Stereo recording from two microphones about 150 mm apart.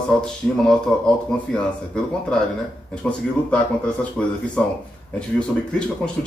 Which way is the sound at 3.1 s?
10° left (ahead or behind).